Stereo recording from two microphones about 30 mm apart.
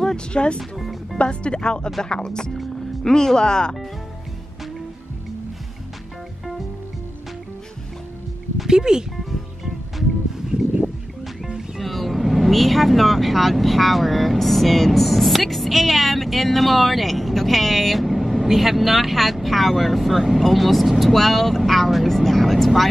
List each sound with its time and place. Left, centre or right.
0.3 s speech: left
0.6 s speech: centre
1.1 s speech: left
8.6 s speech: right
11.4 s music: centre
11.8 s speech: centre